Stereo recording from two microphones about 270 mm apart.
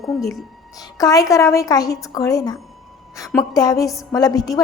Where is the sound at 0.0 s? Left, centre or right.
Centre.